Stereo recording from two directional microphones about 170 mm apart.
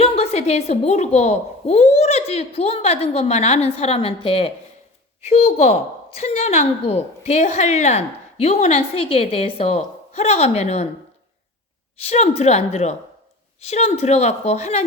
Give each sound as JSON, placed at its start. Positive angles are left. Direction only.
{"t": 0.0, "sound": "a woman's voice", "side_deg": 40}
{"t": 11.9, "sound": "a woman's voice", "side_deg": 40}